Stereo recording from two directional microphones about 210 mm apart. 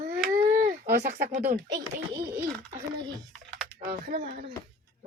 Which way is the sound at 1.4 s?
20° right (ahead or behind).